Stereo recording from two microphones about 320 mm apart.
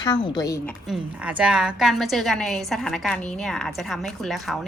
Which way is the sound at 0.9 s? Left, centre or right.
Centre.